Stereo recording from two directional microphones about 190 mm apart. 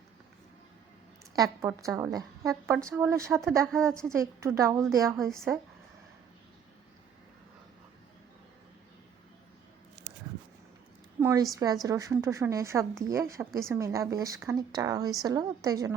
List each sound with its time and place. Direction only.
1.6 s speech: 15° right (ahead or behind)
3.7 s a woman's voice: 5° left (ahead or behind)
3.9 s speech: 15° right (ahead or behind)
5.1 s a woman's voice: centre (ahead or behind)
11.2 s a sound: 15° right (ahead or behind)
11.5 s a woman's voice: 20° right (ahead or behind)